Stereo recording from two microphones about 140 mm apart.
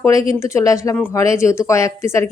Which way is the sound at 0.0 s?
25° left (ahead or behind).